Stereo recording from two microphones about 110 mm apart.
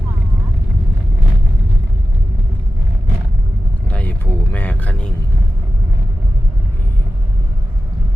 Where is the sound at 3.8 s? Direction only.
10° left (ahead or behind).